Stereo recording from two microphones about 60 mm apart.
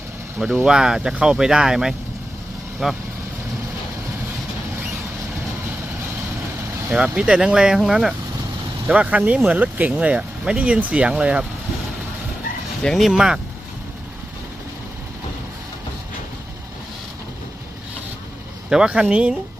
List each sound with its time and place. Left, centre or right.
0.6 s speech: centre
6.9 s speech: centre
8.9 s speech: right
12.8 s speech: centre
13.1 s speech: centre
18.7 s speech: centre